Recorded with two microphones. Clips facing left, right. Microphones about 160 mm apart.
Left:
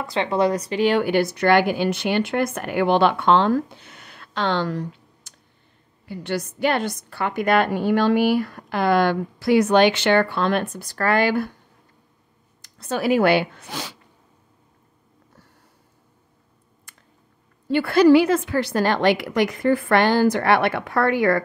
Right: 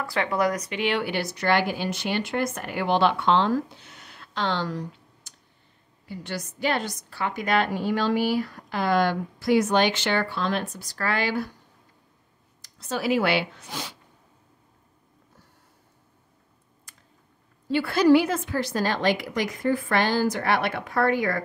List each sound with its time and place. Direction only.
0.0 s a woman's voice: 25° left (ahead or behind); by 11.5 s 55° left (ahead or behind)
12.6 s a woman's voice: 55° left (ahead or behind); by 13.9 s 75° left (ahead or behind)
16.9 s a sound: 60° left (ahead or behind)
17.6 s a woman's voice: 60° left (ahead or behind)